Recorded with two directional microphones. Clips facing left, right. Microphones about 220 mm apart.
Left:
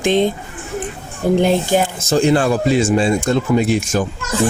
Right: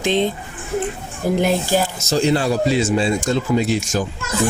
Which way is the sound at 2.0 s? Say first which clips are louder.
Left 3 dB; 55° left (ahead or behind).